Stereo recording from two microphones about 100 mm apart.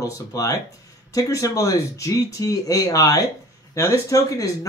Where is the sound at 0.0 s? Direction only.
30° left (ahead or behind).